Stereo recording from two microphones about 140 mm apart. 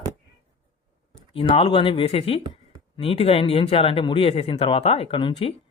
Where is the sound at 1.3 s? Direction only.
40° left (ahead or behind).